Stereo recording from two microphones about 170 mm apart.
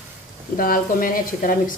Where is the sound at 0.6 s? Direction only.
55° left (ahead or behind).